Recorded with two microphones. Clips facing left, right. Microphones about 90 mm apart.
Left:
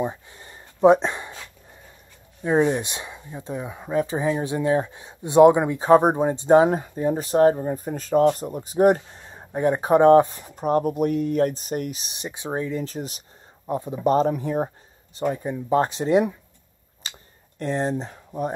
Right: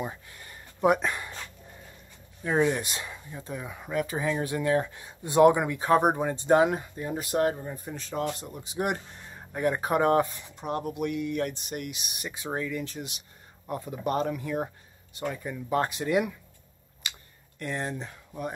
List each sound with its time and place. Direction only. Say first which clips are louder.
0.0 s a sound: left 8 dB; 25° left (ahead or behind)
2.4 s speech: left 5 dB; 25° left (ahead or behind)
6.7 s speech: left 8 dB; 35° left (ahead or behind)
9.3 s speech: left 6 dB; 25° left (ahead or behind)
10.4 s speech: left 10 dB; 40° left (ahead or behind)
13.7 s speech: left 8 dB; 25° left (ahead or behind)
17.0 s a sound: even; 30° left (ahead or behind)
17.6 s speech: left 8 dB; 30° left (ahead or behind)